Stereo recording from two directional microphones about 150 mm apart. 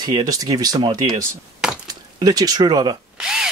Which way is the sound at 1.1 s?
5° right (ahead or behind).